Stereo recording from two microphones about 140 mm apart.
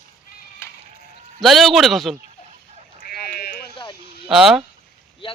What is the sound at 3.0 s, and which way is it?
Sheep, 90° left.